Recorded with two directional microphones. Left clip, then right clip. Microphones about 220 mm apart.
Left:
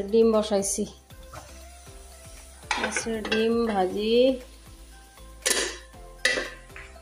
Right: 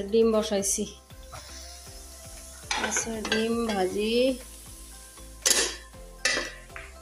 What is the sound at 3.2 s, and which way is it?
Speech, 5° left (ahead or behind).